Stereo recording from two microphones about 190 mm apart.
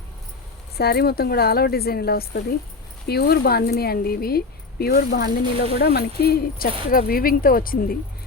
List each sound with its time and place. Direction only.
0.8 s speech: 55° left (ahead or behind)